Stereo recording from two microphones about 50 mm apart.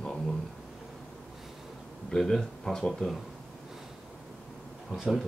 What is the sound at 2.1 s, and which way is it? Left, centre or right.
Speech, centre.